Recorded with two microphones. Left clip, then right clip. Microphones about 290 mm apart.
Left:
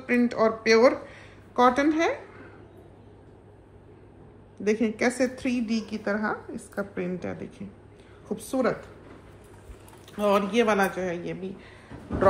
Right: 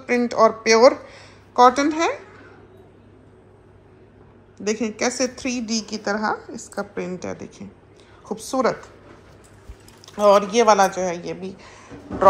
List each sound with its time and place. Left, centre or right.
0.0 s speech: centre
4.6 s a woman's voice: centre
10.0 s a woman's voice: centre